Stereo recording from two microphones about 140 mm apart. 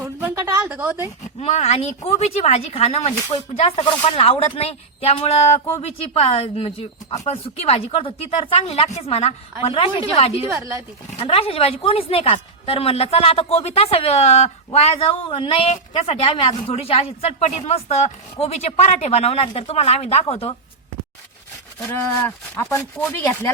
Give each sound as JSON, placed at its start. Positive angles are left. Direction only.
{"t": 0.0, "sound": "a sound", "side_deg": -15}
{"t": 0.4, "sound": "a woman's voice", "side_deg": -15}
{"t": 1.4, "sound": "speech", "side_deg": 50}
{"t": 10.5, "sound": "speech", "side_deg": -25}
{"t": 11.2, "sound": "speech", "side_deg": 45}
{"t": 21.8, "sound": "speech", "side_deg": 15}